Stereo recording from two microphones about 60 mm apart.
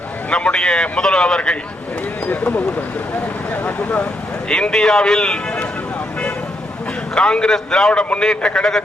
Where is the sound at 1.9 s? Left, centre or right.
Left.